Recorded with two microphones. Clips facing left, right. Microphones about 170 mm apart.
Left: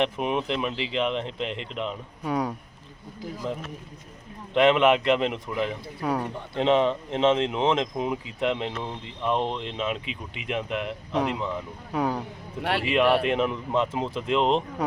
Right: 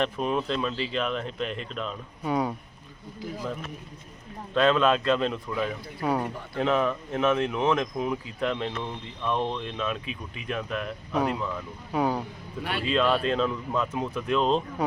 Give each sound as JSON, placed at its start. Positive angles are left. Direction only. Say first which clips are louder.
{"t": 0.0, "sound": "speech", "louder": "left 1 dB", "side_deg": 20}
{"t": 2.2, "sound": "speech", "louder": "even", "side_deg": -5}
{"t": 4.5, "sound": "speech", "louder": "left 3 dB", "side_deg": 20}
{"t": 6.0, "sound": "speech", "louder": "right 1 dB", "side_deg": -5}
{"t": 6.3, "sound": "speech", "louder": "left 3 dB", "side_deg": 25}
{"t": 11.9, "sound": "speech", "louder": "right 1 dB", "side_deg": -5}
{"t": 12.6, "sound": "speech", "louder": "left 5 dB", "side_deg": 75}
{"t": 13.2, "sound": "speech", "louder": "left 1 dB", "side_deg": 20}